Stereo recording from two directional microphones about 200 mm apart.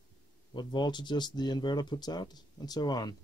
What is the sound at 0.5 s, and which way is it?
Speech, 20° left (ahead or behind).